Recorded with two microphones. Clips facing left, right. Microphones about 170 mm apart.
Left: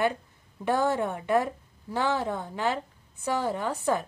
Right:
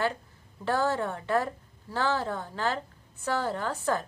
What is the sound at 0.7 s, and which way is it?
A woman's voice, 15° left (ahead or behind).